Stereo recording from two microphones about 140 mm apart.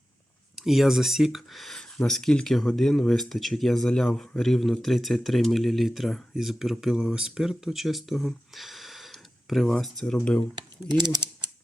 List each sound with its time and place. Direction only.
0.5 s speech: centre (ahead or behind)
10.8 s speech: 30° right (ahead or behind)